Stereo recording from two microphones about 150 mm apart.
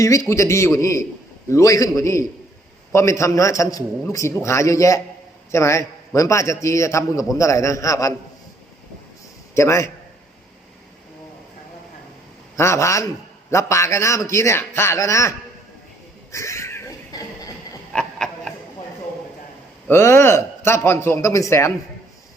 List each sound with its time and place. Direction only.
0.0 s a man's voice: 20° left (ahead or behind)
9.6 s a man's voice: 20° left (ahead or behind)
12.5 s a man's voice: 20° left (ahead or behind)
16.3 s cat: 20° left (ahead or behind)
17.9 s a sound: 5° left (ahead or behind)
19.9 s a man's voice: 15° left (ahead or behind)